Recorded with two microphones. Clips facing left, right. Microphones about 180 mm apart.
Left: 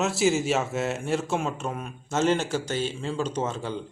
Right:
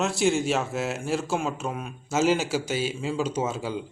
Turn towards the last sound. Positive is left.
turn(degrees=-10)  # may be behind; listen again after turning